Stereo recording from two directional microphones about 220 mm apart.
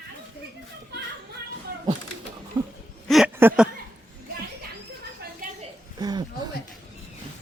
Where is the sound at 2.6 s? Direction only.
20° right (ahead or behind).